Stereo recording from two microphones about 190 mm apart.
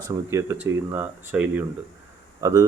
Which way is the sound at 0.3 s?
15° right (ahead or behind).